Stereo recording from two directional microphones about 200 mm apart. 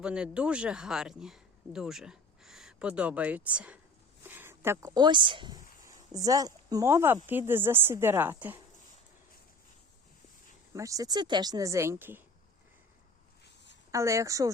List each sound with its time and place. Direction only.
0.0 s speech: 5° right (ahead or behind)
10.8 s speech: 15° right (ahead or behind)
13.9 s speech: 15° right (ahead or behind)